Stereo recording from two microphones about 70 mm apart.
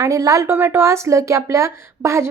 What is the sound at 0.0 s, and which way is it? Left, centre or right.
Speech, right.